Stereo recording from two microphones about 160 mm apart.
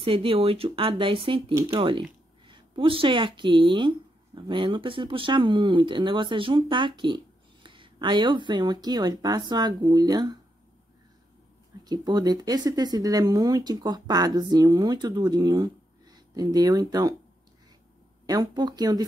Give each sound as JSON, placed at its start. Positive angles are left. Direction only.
{"t": 0.0, "sound": "speech", "side_deg": -35}
{"t": 1.5, "sound": "speech", "side_deg": -20}
{"t": 1.8, "sound": "speech", "side_deg": -30}
{"t": 11.8, "sound": "speech", "side_deg": -25}
{"t": 18.2, "sound": "speech", "side_deg": -25}